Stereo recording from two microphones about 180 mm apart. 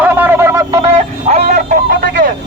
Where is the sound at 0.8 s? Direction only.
35° right (ahead or behind).